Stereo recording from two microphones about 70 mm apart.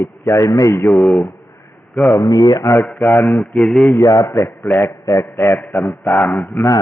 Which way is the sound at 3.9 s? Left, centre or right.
Left.